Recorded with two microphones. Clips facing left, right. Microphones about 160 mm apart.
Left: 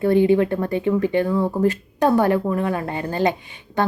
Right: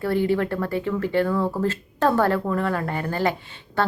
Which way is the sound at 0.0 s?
20° left (ahead or behind).